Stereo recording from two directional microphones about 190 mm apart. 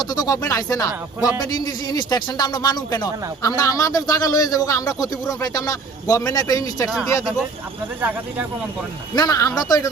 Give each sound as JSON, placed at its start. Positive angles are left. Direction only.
{"t": 0.0, "sound": "a man's voice", "side_deg": 20}
{"t": 9.1, "sound": "speech", "side_deg": 20}